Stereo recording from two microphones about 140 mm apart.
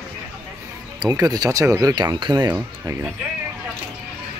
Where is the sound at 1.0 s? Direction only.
25° right (ahead or behind).